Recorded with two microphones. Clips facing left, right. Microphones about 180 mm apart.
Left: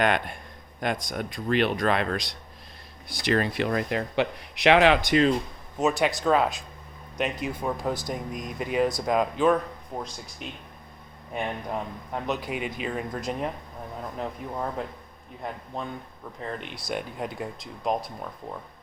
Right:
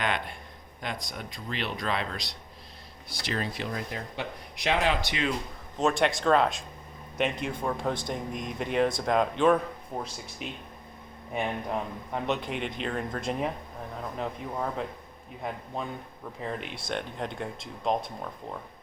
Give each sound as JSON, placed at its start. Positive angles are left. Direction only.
{"t": 0.0, "sound": "speech", "side_deg": 50}
{"t": 4.9, "sound": "speech", "side_deg": 45}
{"t": 5.7, "sound": "speech", "side_deg": 5}
{"t": 16.4, "sound": "speech", "side_deg": 0}